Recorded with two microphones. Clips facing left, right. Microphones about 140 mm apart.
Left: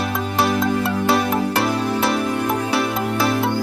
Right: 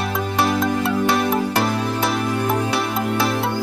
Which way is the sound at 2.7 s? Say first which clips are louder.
Left 1 dB; centre (ahead or behind).